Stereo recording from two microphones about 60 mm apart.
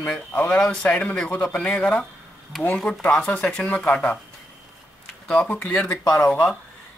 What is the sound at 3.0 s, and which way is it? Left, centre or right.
Speech, left.